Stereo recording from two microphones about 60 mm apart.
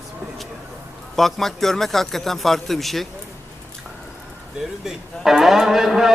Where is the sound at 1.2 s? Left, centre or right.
Centre.